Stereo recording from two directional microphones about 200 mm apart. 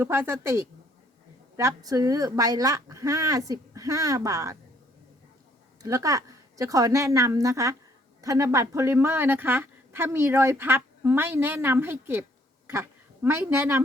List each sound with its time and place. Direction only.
0.0 s a woman's voice: 10° right (ahead or behind)
5.8 s a woman's voice: 15° right (ahead or behind)